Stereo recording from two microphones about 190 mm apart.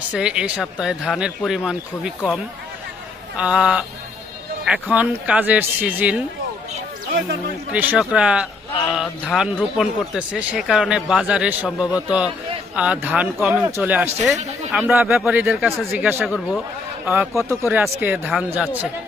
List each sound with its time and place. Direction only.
0.1 s speech: 5° right (ahead or behind)
7.7 s speech: 10° right (ahead or behind)
14.3 s speech: 40° right (ahead or behind)
14.7 s speech: 5° right (ahead or behind)